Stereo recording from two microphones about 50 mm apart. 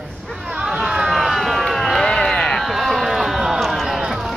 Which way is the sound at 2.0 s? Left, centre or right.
Centre.